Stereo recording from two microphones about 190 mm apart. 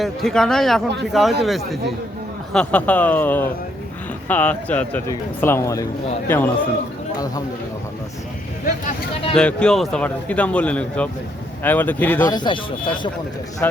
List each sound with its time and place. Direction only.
0.0 s speech: centre (ahead or behind)
9.3 s speech: 5° left (ahead or behind)
12.2 s speech: 20° left (ahead or behind)
13.6 s speech: 10° left (ahead or behind)